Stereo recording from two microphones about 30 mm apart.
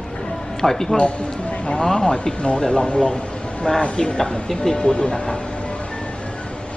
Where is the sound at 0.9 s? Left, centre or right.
Left.